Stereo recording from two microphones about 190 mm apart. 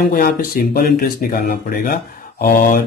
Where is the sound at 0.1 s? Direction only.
50° left (ahead or behind).